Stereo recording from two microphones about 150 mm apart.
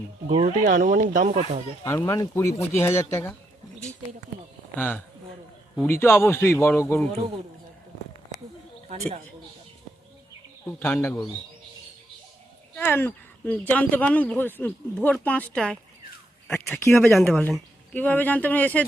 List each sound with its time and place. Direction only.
0.4 s speech: 60° right (ahead or behind)
1.8 s speech: 15° left (ahead or behind)
4.8 s speech: 15° left (ahead or behind)
10.7 s speech: 15° left (ahead or behind)
12.8 s speech: 15° left (ahead or behind)
17.0 s speech: 5° left (ahead or behind)